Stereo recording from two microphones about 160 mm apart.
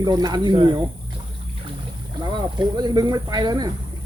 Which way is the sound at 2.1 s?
25° right (ahead or behind).